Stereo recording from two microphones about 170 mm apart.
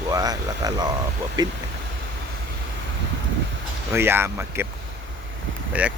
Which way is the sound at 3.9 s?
15° right (ahead or behind).